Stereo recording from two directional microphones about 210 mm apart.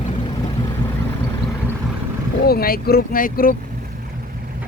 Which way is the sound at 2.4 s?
45° left (ahead or behind).